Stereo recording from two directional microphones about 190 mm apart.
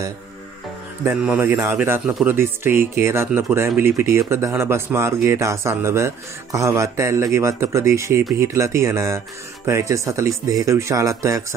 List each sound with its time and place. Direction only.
1.0 s speech: 10° right (ahead or behind)